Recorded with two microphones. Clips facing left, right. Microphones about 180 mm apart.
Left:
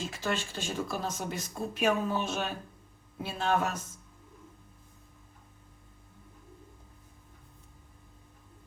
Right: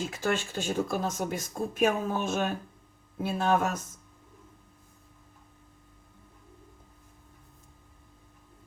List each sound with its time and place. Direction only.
0.0 s speech: 50° right (ahead or behind)